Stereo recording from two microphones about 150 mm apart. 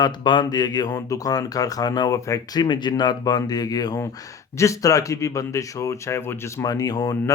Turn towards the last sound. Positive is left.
turn(degrees=25)  # may be behind; listen again after turning